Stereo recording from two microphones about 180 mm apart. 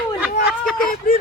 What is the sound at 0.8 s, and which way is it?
Vehicle, 50° left (ahead or behind).